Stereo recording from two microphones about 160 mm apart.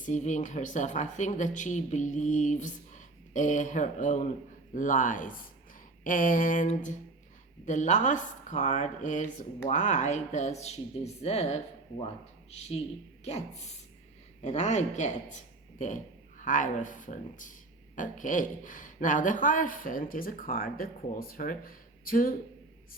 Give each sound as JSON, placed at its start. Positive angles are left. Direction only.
{"t": 0.0, "sound": "speech", "side_deg": 50}